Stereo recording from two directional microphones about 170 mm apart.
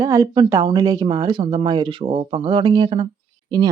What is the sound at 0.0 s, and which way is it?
Speech, 20° right (ahead or behind).